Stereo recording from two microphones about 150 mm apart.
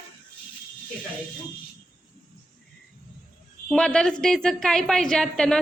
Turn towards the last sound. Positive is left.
turn(degrees=5)  # may be behind; listen again after turning